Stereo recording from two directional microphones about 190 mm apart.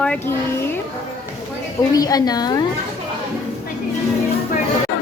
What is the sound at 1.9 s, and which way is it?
Speech, 20° left (ahead or behind).